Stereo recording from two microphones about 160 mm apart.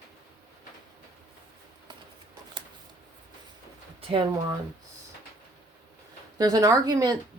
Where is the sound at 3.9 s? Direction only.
35° right (ahead or behind).